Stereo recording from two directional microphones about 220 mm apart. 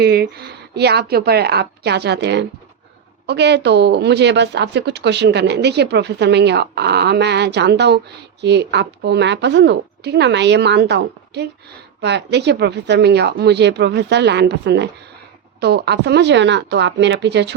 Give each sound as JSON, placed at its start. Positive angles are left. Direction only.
{"t": 0.0, "sound": "a woman's voice", "side_deg": -45}